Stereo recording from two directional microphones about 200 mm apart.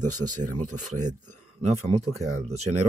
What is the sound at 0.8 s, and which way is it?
Speech, 35° right (ahead or behind).